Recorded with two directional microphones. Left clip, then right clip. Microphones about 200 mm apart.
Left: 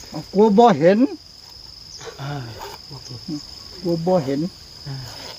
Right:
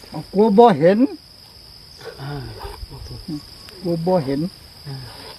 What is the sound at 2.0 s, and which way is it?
Wild animals, 45° left (ahead or behind).